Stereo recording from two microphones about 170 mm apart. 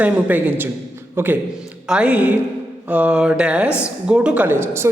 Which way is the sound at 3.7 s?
15° left (ahead or behind).